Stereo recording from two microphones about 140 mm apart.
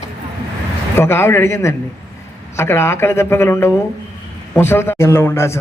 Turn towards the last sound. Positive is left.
turn(degrees=20)  # may be behind; listen again after turning